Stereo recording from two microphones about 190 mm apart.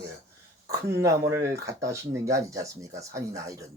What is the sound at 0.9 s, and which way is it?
Speech, 15° right (ahead or behind).